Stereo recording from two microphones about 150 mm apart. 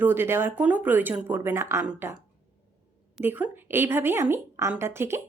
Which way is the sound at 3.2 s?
15° right (ahead or behind).